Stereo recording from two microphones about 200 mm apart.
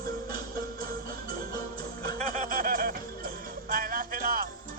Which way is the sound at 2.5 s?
45° right (ahead or behind).